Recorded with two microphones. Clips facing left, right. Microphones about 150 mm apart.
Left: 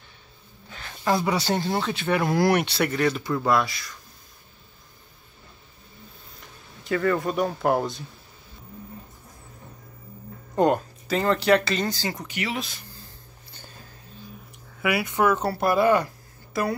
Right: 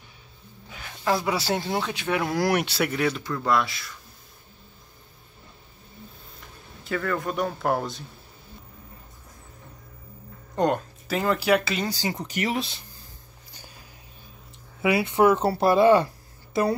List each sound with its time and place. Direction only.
0.7 s speech: 5° right (ahead or behind)
6.8 s speech: centre (ahead or behind)
10.5 s speech: 5° left (ahead or behind); by 12.2 s 15° right (ahead or behind)
12.3 s speech: 40° right (ahead or behind)
14.8 s speech: 25° right (ahead or behind)